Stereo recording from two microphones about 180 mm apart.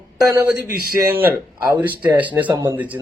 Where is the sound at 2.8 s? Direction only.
10° right (ahead or behind).